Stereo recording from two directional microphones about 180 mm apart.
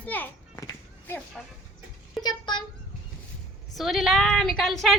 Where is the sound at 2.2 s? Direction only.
25° left (ahead or behind).